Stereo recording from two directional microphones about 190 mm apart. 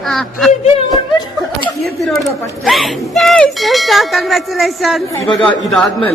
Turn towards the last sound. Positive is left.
turn(degrees=0)  # may be behind; listen again after turning